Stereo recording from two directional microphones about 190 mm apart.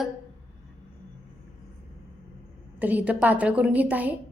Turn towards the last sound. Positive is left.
turn(degrees=-10)  # may be behind; listen again after turning